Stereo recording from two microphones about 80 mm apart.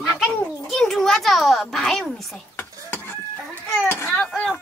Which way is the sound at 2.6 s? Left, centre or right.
Left.